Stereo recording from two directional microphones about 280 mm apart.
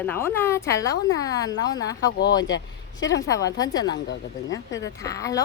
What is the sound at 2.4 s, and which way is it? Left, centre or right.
Speech, left.